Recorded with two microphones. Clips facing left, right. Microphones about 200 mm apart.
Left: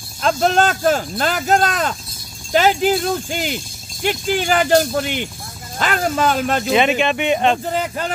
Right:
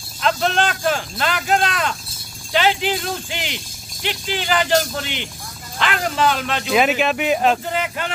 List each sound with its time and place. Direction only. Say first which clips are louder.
0.2 s speech: left 3 dB; 40° left (ahead or behind)
6.6 s speech: right 1 dB; centre (ahead or behind)
7.7 s speech: left 2 dB; 35° left (ahead or behind)